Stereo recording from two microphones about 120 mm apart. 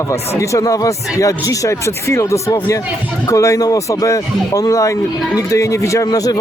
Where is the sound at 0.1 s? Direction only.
25° left (ahead or behind).